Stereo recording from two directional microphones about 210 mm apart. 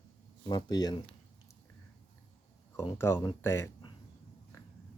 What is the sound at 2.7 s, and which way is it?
Speech, 10° left (ahead or behind).